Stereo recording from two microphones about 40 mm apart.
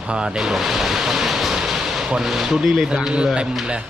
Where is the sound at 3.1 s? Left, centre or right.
Right.